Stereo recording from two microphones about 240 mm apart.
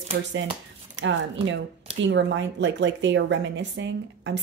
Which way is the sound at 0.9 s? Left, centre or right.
Right.